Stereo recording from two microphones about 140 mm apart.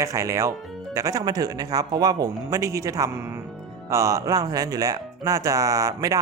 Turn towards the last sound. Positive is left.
turn(degrees=-25)  # may be behind; listen again after turning